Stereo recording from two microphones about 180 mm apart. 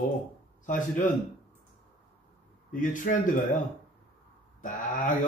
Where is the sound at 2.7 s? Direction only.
45° left (ahead or behind).